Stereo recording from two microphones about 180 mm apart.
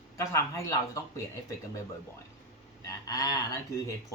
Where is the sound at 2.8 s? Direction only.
20° left (ahead or behind).